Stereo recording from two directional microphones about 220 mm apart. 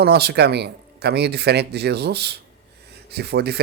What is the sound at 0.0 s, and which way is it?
Speech, 45° right (ahead or behind).